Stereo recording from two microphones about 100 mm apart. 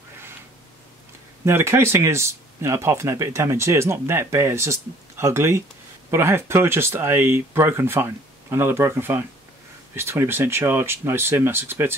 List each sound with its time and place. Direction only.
1.4 s speech: 25° right (ahead or behind)